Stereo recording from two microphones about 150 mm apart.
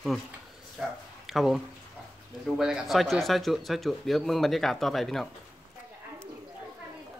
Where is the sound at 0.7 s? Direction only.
Centre (ahead or behind).